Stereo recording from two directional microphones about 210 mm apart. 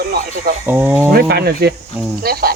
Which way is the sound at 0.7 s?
10° right (ahead or behind).